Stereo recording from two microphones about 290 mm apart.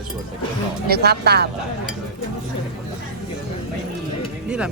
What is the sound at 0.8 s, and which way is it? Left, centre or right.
Speech, right.